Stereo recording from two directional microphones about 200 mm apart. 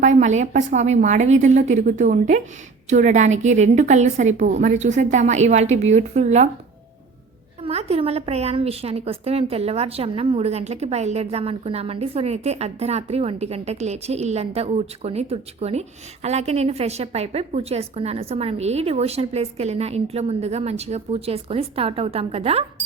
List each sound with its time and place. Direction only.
0.0 s a woman's voice: 35° right (ahead or behind)
7.6 s a woman's voice: 30° right (ahead or behind)